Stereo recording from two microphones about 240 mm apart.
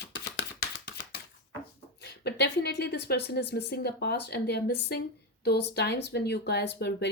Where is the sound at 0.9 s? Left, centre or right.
Left.